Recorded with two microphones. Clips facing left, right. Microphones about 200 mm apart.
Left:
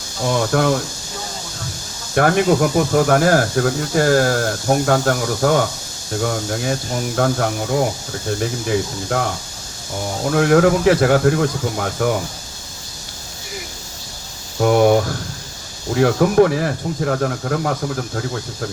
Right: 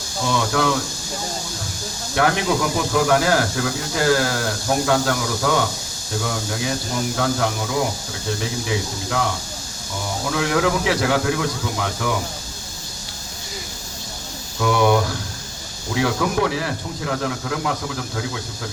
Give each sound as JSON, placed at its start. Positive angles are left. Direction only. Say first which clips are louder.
{"t": 0.3, "sound": "speech", "louder": "left 4 dB", "side_deg": 50}
{"t": 2.1, "sound": "speech", "louder": "left 5 dB", "side_deg": 50}
{"t": 8.4, "sound": "speech", "louder": "left 6 dB", "side_deg": 50}
{"t": 10.2, "sound": "speech", "louder": "left 7 dB", "side_deg": 50}
{"t": 14.6, "sound": "a sound", "louder": "left 5 dB", "side_deg": 45}
{"t": 16.0, "sound": "speech", "louder": "left 7 dB", "side_deg": 45}